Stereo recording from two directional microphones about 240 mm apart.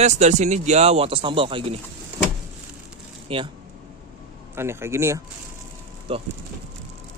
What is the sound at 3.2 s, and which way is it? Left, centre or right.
Speech, right.